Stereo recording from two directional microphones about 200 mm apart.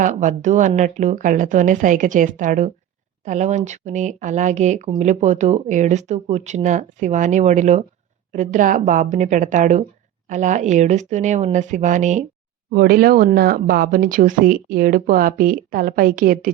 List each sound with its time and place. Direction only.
0.0 s speech: 40° right (ahead or behind)
12.7 s speech: 50° right (ahead or behind)